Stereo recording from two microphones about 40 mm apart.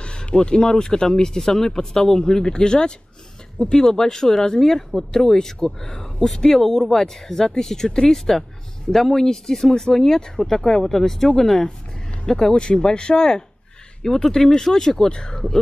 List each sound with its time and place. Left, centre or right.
0.0 s speech: left